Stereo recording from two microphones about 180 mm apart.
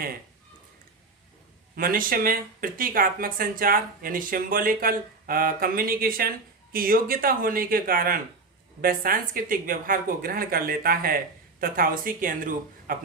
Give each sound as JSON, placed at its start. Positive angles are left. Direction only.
{"t": 1.7, "sound": "speech", "side_deg": -50}